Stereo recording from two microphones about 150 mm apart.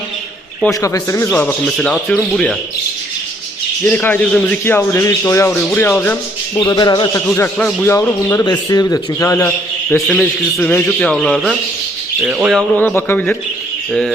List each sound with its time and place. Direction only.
0.7 s a man's voice: 20° left (ahead or behind)
3.8 s a man's voice: 10° left (ahead or behind)
6.6 s a man's voice: 30° left (ahead or behind)
7.3 s a man's voice: 15° left (ahead or behind)
10.1 s a man's voice: 5° left (ahead or behind)
12.5 s a man's voice: 10° left (ahead or behind)